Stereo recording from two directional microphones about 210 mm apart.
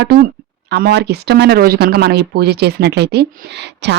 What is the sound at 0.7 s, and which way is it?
Speech, 50° right (ahead or behind).